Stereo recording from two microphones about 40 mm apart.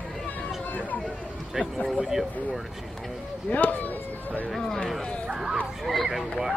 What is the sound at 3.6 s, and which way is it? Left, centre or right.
Speech, left.